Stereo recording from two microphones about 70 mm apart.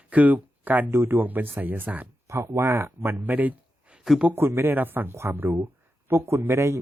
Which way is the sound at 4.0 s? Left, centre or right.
Centre.